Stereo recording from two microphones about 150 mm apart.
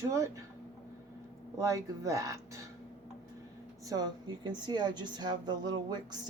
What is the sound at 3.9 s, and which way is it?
Speech, 25° right (ahead or behind).